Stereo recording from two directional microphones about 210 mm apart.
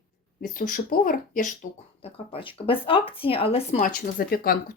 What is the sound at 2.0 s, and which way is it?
Speech, 30° left (ahead or behind).